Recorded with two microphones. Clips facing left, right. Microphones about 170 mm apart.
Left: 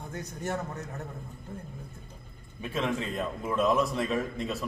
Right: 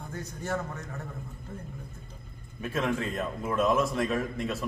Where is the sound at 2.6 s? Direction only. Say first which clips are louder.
Right 1 dB; centre (ahead or behind).